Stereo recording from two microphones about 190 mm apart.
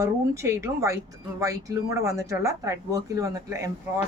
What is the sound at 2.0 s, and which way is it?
Speech, 15° right (ahead or behind).